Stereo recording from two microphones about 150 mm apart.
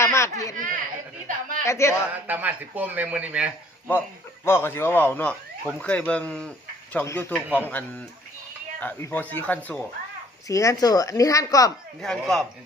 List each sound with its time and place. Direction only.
0.0 s a sound: 20° left (ahead or behind)
0.5 s speech: 60° right (ahead or behind)
1.6 s speech: 20° left (ahead or behind)
2.1 s speech: 10° right (ahead or behind)
4.4 s speech: 15° left (ahead or behind)
7.3 s speech: 10° right (ahead or behind)
7.7 s speech: 10° left (ahead or behind)
10.5 s speech: 20° left (ahead or behind)
11.9 s chopping: 5° left (ahead or behind)